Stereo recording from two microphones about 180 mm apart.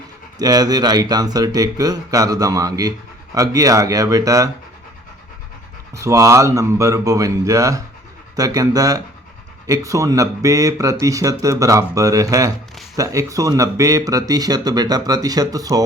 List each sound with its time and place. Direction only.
0.3 s speech: 20° right (ahead or behind)
5.9 s speech: 15° right (ahead or behind)